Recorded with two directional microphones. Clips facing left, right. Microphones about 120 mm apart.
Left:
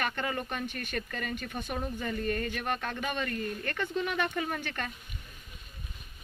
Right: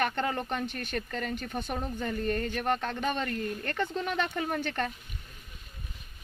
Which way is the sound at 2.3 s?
35° right (ahead or behind).